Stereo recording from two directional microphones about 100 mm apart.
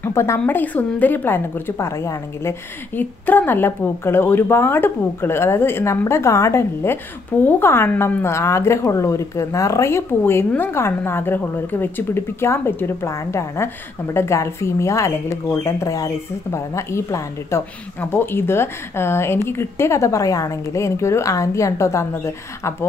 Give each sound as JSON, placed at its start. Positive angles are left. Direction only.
{"t": 0.0, "sound": "speech", "side_deg": 25}
{"t": 3.0, "sound": "speech", "side_deg": 20}